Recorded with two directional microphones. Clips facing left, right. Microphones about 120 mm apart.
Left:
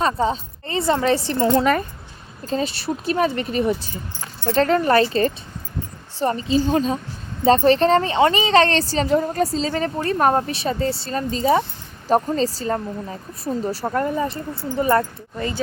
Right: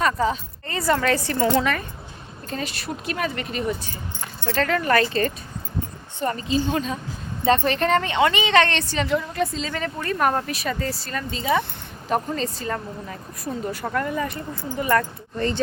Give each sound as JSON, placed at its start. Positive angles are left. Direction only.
{"t": 0.0, "sound": "a woman's voice", "side_deg": 30}
{"t": 15.4, "sound": "speech", "side_deg": 5}